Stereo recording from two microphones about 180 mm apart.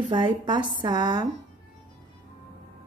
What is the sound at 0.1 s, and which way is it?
A woman's voice, 25° right (ahead or behind).